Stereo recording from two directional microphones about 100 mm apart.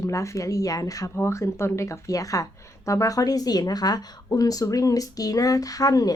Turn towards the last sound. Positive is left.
turn(degrees=35)  # may be behind; listen again after turning